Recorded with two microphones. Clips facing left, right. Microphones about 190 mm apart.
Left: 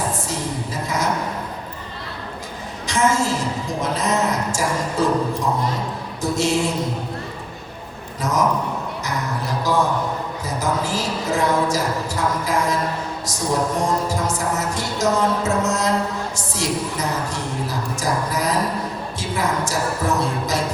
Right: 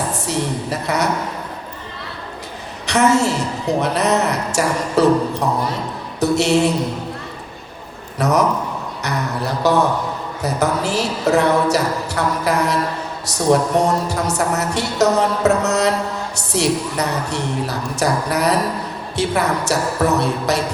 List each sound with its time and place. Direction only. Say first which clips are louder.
0.1 s a sound: right 4 dB; 70° right (ahead or behind)
2.8 s a woman's voice: right 4 dB; 70° right (ahead or behind)
8.2 s a woman's voice: right 5 dB; 70° right (ahead or behind)
9.6 s a woman's voice: right 4 dB; 70° right (ahead or behind)